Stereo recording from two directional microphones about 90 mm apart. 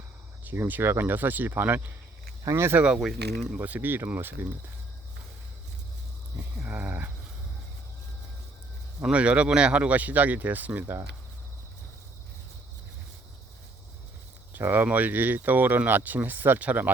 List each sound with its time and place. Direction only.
0.4 s speech: 20° right (ahead or behind)
2.4 s speech: 30° right (ahead or behind)
2.8 s speech: 10° right (ahead or behind)
3.6 s speech: 20° right (ahead or behind)
6.3 s a sound: 15° right (ahead or behind)
9.0 s speech: 10° right (ahead or behind)
14.5 s speech: 20° right (ahead or behind)